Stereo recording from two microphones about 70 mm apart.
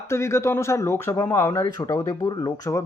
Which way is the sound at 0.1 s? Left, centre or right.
Left.